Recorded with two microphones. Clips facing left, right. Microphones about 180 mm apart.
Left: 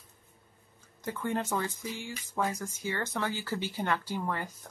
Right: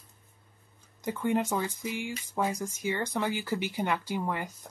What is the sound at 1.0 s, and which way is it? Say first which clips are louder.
Speech: right 4 dB; 15° right (ahead or behind).